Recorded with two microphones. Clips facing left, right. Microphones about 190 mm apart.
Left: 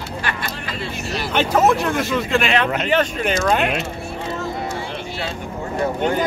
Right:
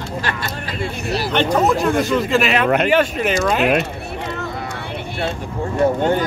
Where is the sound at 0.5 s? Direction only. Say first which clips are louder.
Right 3 dB; 45° right (ahead or behind).